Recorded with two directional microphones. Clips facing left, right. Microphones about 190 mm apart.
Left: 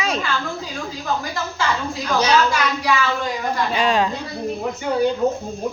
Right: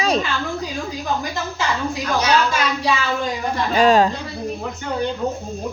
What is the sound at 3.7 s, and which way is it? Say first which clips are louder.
Speech: right 6 dB; 40° right (ahead or behind).